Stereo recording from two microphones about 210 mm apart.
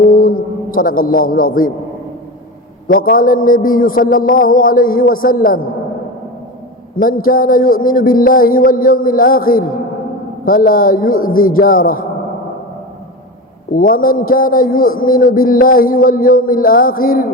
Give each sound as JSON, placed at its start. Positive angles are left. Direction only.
{"t": 0.0, "sound": "a sound", "side_deg": 40}
{"t": 2.8, "sound": "a man's voice", "side_deg": 40}
{"t": 6.9, "sound": "a man's voice", "side_deg": 40}
{"t": 13.7, "sound": "a man's voice", "side_deg": 40}